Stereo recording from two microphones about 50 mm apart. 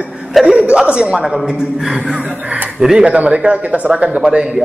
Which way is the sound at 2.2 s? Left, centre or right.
Right.